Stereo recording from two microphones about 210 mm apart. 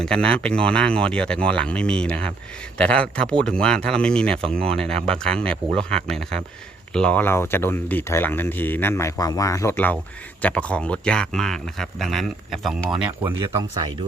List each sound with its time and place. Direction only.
0.0 s speech: 5° left (ahead or behind); by 13.8 s 10° right (ahead or behind)